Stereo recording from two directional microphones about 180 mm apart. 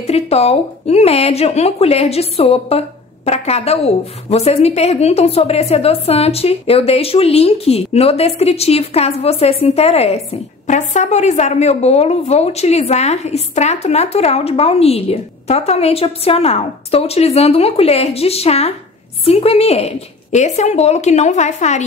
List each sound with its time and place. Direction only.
0.0 s a woman's voice: 35° left (ahead or behind)